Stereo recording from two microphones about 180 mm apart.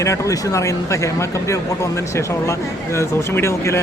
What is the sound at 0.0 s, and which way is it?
Speech, 15° left (ahead or behind).